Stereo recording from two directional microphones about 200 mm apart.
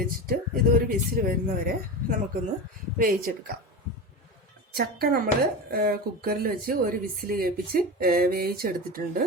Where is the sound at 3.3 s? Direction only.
50° right (ahead or behind).